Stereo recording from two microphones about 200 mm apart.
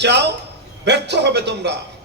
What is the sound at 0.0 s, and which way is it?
A man's voice, 60° right (ahead or behind).